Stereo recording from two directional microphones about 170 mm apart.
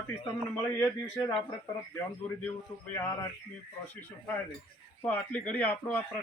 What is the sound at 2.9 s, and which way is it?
A man's voice, 15° left (ahead or behind).